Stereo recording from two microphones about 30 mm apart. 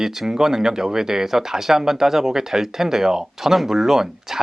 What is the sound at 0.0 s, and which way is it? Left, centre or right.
Speech, centre.